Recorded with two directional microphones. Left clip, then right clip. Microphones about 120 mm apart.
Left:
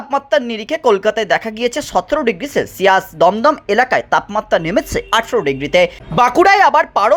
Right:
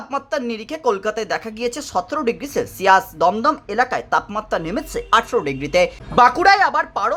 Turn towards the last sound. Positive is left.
turn(degrees=30)  # may be behind; listen again after turning